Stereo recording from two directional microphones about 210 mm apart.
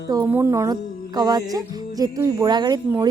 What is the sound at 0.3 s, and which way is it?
A woman's voice, 10° right (ahead or behind).